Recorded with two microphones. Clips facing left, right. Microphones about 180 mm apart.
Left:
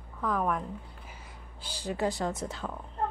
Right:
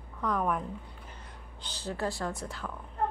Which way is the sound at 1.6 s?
10° left (ahead or behind).